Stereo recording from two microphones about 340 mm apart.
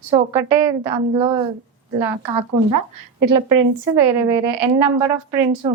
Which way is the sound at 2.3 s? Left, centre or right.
Right.